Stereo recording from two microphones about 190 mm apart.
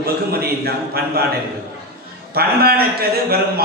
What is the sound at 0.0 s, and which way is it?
A man's voice, 55° right (ahead or behind).